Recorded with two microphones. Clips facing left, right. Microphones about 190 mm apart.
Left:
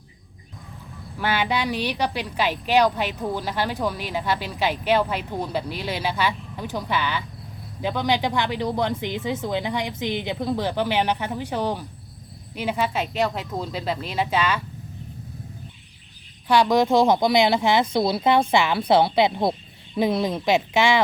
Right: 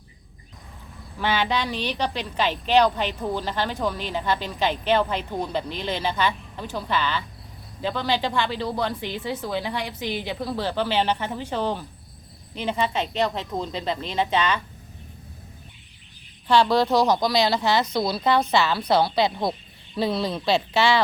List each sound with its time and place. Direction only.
1.2 s a woman's voice: 10° left (ahead or behind)
16.5 s a woman's voice: 15° left (ahead or behind)